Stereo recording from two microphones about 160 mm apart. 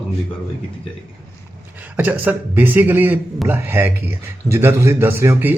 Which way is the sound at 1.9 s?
10° right (ahead or behind).